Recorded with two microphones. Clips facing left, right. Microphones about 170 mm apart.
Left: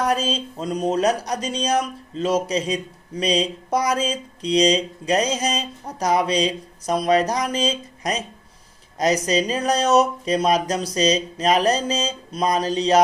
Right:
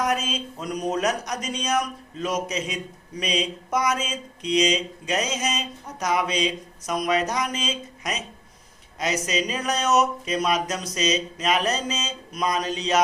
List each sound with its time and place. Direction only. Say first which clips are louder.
0.0 s speech: left 3 dB; 30° left (ahead or behind)